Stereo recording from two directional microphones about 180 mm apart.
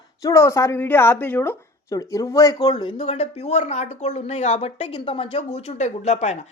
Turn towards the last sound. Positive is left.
turn(degrees=40)  # may be behind; listen again after turning